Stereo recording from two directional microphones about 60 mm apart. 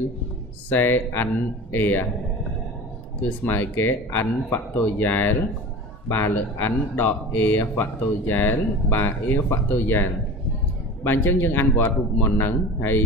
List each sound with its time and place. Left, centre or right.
0.7 s speech: left
3.3 s speech: left